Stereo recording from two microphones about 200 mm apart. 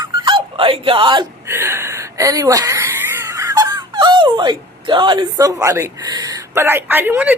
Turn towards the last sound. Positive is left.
turn(degrees=-10)  # may be behind; listen again after turning